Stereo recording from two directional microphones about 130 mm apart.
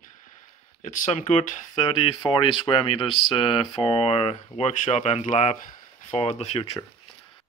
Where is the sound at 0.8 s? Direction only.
70° left (ahead or behind).